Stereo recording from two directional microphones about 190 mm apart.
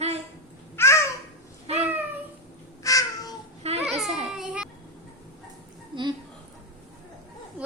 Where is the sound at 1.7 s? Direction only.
35° right (ahead or behind).